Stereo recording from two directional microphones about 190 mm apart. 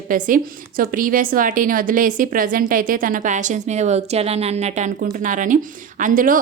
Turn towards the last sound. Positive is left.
turn(degrees=-45)  # may be behind; listen again after turning